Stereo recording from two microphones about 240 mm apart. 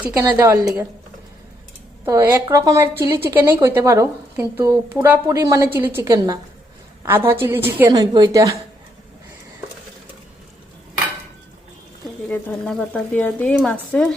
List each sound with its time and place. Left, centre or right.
0.0 s speech: centre
2.0 s speech: centre
12.3 s speech: centre